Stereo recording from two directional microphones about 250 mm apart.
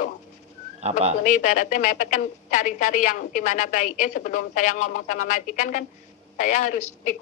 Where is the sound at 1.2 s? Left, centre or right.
Left.